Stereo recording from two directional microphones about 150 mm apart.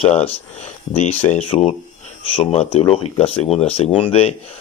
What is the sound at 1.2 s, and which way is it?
Speech, 30° left (ahead or behind).